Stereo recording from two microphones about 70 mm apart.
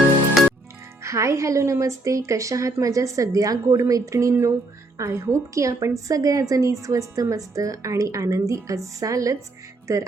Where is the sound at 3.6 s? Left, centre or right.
Right.